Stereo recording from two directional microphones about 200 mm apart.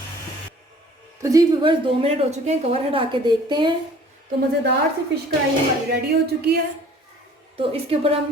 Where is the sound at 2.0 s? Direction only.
30° right (ahead or behind).